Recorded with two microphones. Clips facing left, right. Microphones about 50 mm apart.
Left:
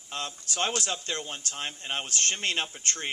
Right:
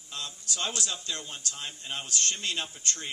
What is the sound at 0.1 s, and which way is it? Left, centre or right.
Speech, left.